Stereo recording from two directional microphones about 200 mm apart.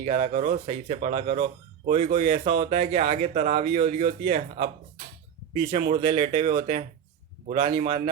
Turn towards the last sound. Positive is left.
turn(degrees=-30)  # may be behind; listen again after turning